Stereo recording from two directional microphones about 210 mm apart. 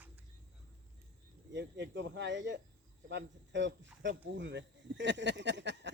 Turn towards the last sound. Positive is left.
turn(degrees=-55)  # may be behind; listen again after turning